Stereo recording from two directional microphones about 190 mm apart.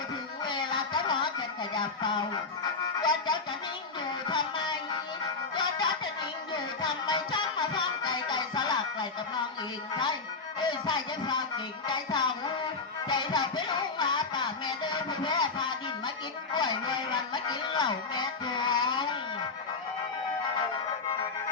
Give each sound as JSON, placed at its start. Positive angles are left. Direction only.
{"t": 0.4, "sound": "music", "side_deg": 25}
{"t": 6.5, "sound": "music", "side_deg": 25}
{"t": 10.6, "sound": "a sound", "side_deg": 25}
{"t": 13.1, "sound": "music", "side_deg": 25}